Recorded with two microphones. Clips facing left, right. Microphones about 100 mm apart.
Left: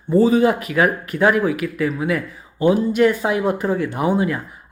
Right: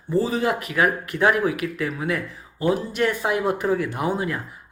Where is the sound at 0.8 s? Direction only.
5° left (ahead or behind).